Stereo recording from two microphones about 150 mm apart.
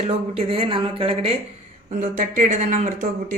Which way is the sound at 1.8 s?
60° right (ahead or behind).